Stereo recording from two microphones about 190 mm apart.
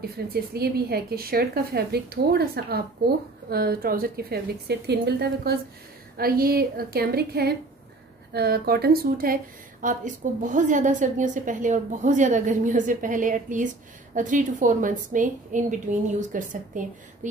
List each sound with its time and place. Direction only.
0.3 s a woman's voice: 55° right (ahead or behind)